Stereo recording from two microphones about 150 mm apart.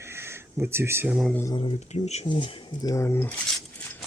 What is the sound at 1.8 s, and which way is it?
Speech, 45° left (ahead or behind).